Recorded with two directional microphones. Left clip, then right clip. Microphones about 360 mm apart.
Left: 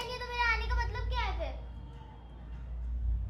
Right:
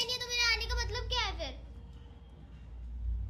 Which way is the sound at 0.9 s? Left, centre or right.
Right.